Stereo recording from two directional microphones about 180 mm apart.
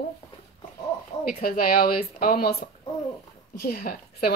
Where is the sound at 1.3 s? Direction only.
50° left (ahead or behind).